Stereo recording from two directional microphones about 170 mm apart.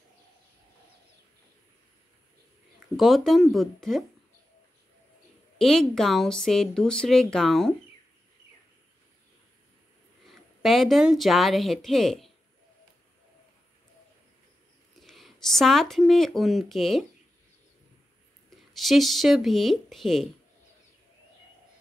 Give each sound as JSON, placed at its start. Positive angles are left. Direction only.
{"t": 3.0, "sound": "speech", "side_deg": 0}
{"t": 5.6, "sound": "speech", "side_deg": 0}
{"t": 10.2, "sound": "speech", "side_deg": 0}
{"t": 15.0, "sound": "speech", "side_deg": 0}
{"t": 18.7, "sound": "speech", "side_deg": 0}